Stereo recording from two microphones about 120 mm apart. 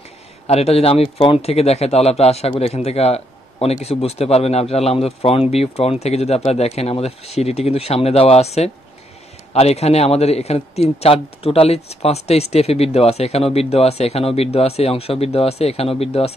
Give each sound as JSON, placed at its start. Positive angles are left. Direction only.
{"t": 0.5, "sound": "a man's voice", "side_deg": 60}